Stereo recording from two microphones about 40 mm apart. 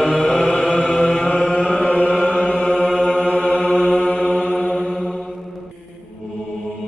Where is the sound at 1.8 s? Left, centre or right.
Left.